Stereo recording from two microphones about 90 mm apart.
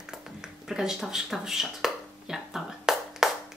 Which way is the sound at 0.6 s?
5° right (ahead or behind).